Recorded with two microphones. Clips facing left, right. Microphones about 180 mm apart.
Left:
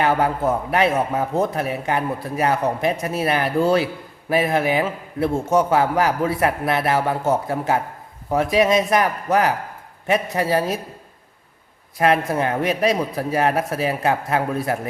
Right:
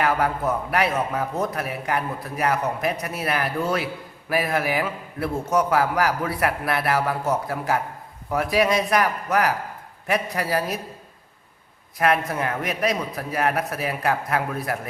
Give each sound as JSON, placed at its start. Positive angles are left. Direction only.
{"t": 0.0, "sound": "a man's voice", "side_deg": 25}
{"t": 11.9, "sound": "a man's voice", "side_deg": 30}